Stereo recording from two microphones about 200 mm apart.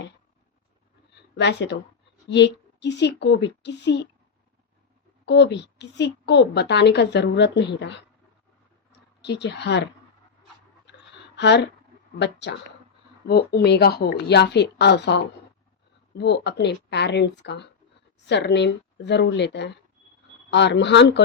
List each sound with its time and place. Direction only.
1.4 s a woman's voice: 60° left (ahead or behind)
5.2 s a woman's voice: 55° left (ahead or behind)
9.2 s a woman's voice: 60° left (ahead or behind)
11.3 s a woman's voice: 60° left (ahead or behind)